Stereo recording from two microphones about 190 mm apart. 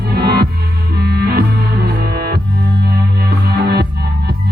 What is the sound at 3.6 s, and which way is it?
Music, 55° right (ahead or behind).